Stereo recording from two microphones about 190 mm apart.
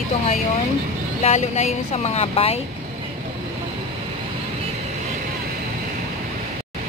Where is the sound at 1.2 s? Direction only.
35° left (ahead or behind).